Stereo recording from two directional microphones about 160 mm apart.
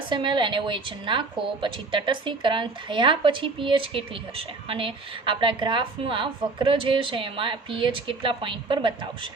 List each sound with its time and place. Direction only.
0.1 s speech: 30° right (ahead or behind)